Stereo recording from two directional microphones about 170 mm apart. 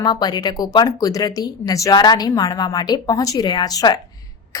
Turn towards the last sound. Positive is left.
turn(degrees=25)  # may be behind; listen again after turning